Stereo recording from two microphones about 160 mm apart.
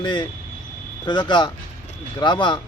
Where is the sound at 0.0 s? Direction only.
30° left (ahead or behind).